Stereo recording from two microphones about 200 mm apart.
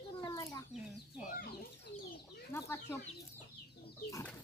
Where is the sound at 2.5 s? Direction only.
15° left (ahead or behind).